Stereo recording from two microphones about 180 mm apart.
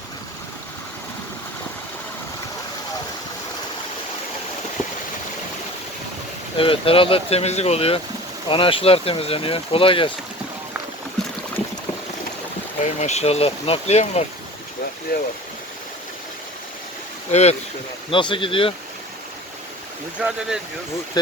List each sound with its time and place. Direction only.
6.6 s speech: 30° left (ahead or behind)
13.0 s speech: 40° left (ahead or behind)
15.1 s speech: 55° left (ahead or behind)
17.3 s speech: 35° left (ahead or behind)
20.1 s speech: 5° right (ahead or behind)